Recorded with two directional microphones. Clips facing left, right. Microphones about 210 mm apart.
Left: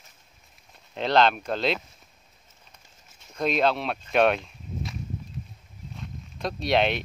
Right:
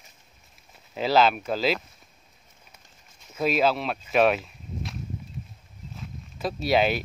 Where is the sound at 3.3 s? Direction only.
5° right (ahead or behind).